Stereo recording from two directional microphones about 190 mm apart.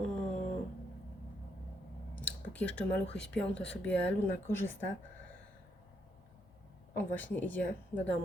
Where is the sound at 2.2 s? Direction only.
5° left (ahead or behind).